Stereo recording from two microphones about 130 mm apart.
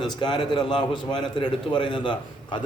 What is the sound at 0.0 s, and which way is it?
A man's voice, 35° left (ahead or behind).